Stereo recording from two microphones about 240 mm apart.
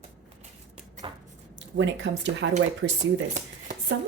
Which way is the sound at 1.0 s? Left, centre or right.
Right.